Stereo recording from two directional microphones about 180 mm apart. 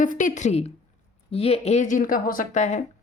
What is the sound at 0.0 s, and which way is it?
A woman's voice, 45° left (ahead or behind).